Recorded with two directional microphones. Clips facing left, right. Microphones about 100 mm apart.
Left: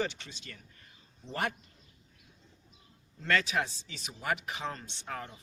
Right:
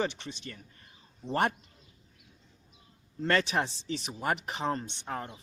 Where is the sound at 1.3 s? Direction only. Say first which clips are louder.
Right 6 dB; 40° right (ahead or behind).